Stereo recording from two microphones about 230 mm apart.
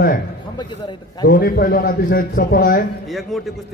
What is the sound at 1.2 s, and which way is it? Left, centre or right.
A man's voice, left.